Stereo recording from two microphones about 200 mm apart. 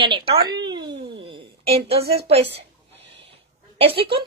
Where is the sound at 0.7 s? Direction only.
20° right (ahead or behind).